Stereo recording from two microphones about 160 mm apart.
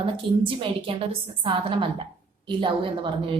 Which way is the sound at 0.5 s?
35° right (ahead or behind).